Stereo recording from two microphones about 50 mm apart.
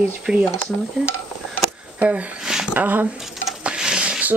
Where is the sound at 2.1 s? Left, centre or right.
Right.